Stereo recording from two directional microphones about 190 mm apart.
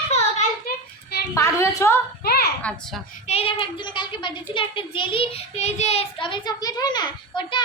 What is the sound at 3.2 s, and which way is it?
A child's voice, 30° left (ahead or behind).